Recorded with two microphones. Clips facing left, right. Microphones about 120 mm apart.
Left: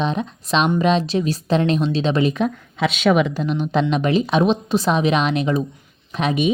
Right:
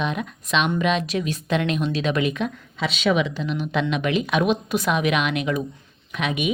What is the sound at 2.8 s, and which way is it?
Speech, 50° left (ahead or behind).